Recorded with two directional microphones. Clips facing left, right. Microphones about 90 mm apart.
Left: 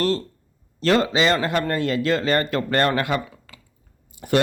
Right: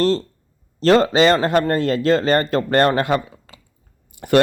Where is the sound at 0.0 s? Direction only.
30° right (ahead or behind).